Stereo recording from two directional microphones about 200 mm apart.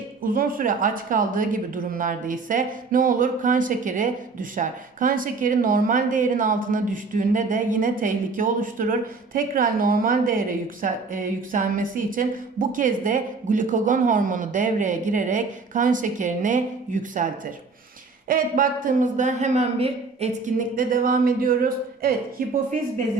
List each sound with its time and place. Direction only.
0.2 s a man's voice: 45° right (ahead or behind)